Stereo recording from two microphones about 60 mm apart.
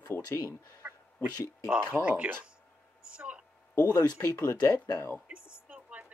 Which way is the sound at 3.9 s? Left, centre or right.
Left.